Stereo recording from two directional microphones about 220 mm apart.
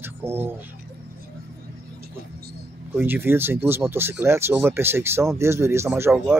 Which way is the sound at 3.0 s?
10° right (ahead or behind).